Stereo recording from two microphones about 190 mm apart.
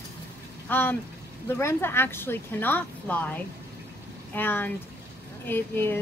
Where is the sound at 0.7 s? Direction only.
10° left (ahead or behind).